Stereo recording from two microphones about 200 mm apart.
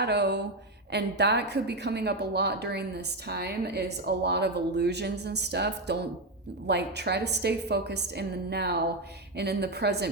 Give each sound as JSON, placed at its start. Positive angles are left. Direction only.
{"t": 0.0, "sound": "a woman's voice", "side_deg": -55}